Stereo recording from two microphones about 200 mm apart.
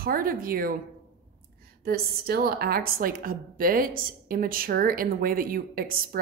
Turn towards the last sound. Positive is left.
turn(degrees=-45)  # may be behind; listen again after turning